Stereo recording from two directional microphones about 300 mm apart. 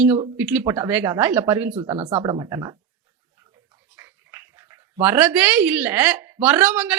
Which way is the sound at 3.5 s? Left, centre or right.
Centre.